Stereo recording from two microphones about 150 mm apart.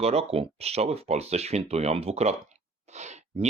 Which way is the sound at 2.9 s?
50° right (ahead or behind).